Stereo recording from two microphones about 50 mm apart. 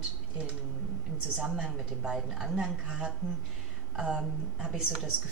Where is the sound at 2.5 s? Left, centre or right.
Centre.